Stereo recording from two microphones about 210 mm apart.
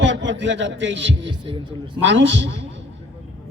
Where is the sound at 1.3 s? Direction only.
25° right (ahead or behind).